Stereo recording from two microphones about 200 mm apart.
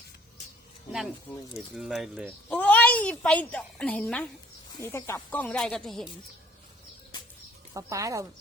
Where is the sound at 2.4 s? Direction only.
5° left (ahead or behind).